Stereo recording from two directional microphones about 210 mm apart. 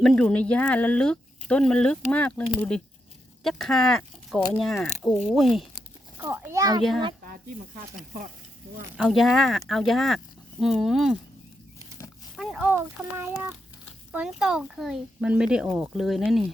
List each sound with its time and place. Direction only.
0.0 s speech: 5° left (ahead or behind)
6.1 s speech: 10° right (ahead or behind)
9.0 s speech: centre (ahead or behind)
12.4 s speech: 5° right (ahead or behind)